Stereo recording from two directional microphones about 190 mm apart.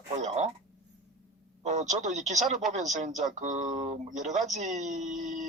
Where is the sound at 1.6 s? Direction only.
40° right (ahead or behind).